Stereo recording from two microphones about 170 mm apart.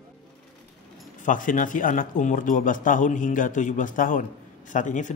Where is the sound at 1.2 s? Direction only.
50° left (ahead or behind).